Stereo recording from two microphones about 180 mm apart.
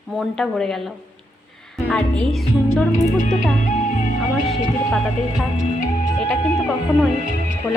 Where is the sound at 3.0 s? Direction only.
45° left (ahead or behind).